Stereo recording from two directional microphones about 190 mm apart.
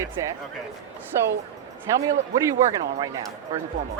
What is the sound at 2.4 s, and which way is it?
Speech, 20° right (ahead or behind).